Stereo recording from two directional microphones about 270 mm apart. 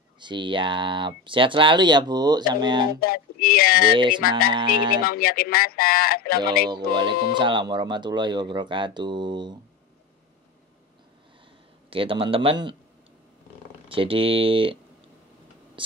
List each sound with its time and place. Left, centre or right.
0.2 s speech: centre
2.9 s speech: left
3.9 s speech: centre
4.9 s speech: left
6.9 s speech: centre
11.9 s speech: centre
13.8 s speech: centre